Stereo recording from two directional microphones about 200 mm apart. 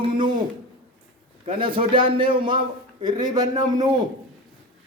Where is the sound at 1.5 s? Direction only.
25° right (ahead or behind).